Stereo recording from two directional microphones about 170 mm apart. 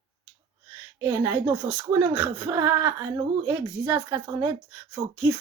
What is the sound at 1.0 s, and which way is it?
Speech, 15° right (ahead or behind).